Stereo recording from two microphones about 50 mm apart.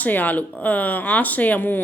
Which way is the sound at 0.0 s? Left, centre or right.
Left.